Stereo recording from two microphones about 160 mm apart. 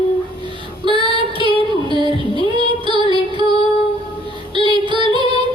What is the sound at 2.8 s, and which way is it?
Music, 30° right (ahead or behind).